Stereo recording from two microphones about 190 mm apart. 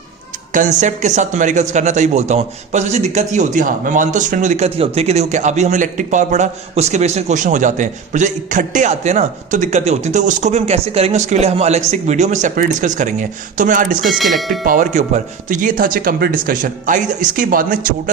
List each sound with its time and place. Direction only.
0.5 s a man's voice: 40° right (ahead or behind)
14.0 s speech: centre (ahead or behind)
14.6 s speech: 45° right (ahead or behind)